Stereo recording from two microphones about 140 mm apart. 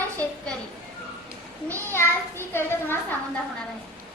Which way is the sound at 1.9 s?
15° left (ahead or behind).